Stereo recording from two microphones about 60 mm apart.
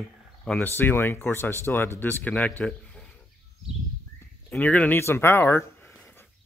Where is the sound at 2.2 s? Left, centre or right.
Left.